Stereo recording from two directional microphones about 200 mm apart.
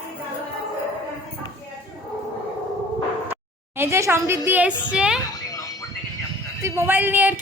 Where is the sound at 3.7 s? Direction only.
15° right (ahead or behind).